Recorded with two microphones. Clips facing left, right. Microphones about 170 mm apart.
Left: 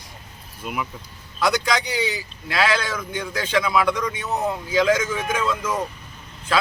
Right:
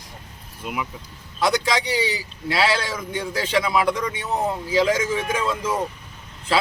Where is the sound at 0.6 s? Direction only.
15° right (ahead or behind).